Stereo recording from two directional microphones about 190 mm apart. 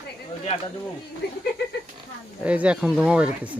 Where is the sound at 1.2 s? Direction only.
55° left (ahead or behind).